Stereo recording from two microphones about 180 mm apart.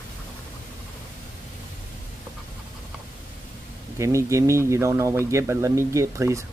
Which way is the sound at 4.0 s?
15° right (ahead or behind).